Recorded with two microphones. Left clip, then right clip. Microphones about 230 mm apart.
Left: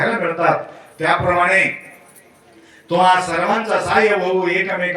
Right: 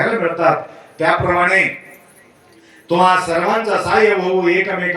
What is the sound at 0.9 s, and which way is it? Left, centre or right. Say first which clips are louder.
Speech: right 1 dB; right.